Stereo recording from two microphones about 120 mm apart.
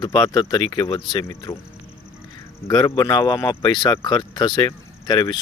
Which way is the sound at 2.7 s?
30° left (ahead or behind).